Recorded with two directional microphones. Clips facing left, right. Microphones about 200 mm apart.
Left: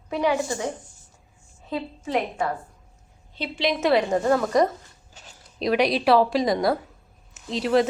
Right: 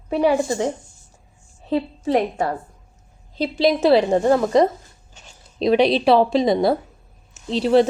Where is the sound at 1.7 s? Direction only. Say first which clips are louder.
Right 7 dB; 35° right (ahead or behind).